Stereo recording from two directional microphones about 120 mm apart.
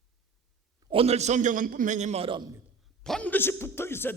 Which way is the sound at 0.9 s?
55° right (ahead or behind).